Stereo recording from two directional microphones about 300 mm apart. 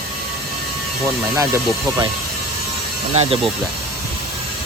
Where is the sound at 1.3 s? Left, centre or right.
Centre.